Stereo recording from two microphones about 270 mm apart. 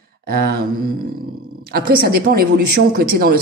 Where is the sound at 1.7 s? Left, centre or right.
Right.